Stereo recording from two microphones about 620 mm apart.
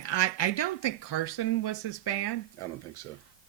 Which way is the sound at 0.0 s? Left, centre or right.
Left.